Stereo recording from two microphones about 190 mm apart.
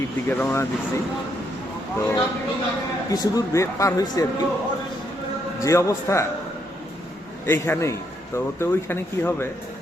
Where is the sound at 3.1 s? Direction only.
20° left (ahead or behind).